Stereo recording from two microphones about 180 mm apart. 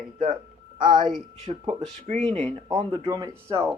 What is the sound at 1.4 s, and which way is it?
Speech, 35° right (ahead or behind).